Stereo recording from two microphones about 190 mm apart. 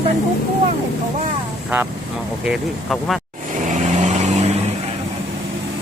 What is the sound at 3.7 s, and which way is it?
Vehicle, 40° right (ahead or behind).